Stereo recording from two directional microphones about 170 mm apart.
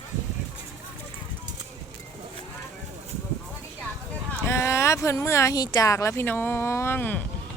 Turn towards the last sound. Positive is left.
turn(degrees=10)  # may be behind; listen again after turning